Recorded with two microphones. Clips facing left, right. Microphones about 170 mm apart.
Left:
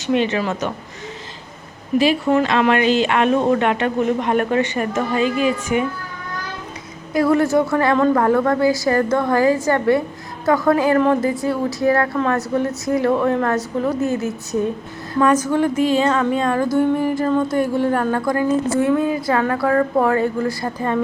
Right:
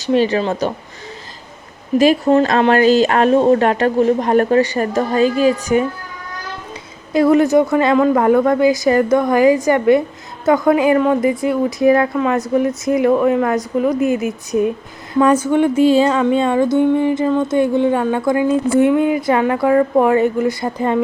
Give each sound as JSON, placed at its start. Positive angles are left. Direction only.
{"t": 0.0, "sound": "speech", "side_deg": -35}
{"t": 2.0, "sound": "speech", "side_deg": -45}
{"t": 7.1, "sound": "a woman's voice", "side_deg": -20}
{"t": 12.1, "sound": "a woman's voice", "side_deg": -5}
{"t": 15.1, "sound": "a woman's voice", "side_deg": -30}